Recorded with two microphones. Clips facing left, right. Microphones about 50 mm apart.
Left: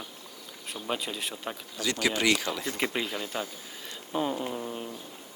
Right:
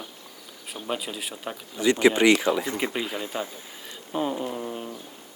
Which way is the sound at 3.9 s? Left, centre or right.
Centre.